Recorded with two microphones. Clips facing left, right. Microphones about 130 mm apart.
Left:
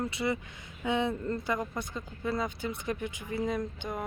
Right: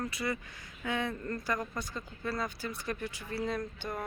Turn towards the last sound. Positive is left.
turn(degrees=20)  # may be behind; listen again after turning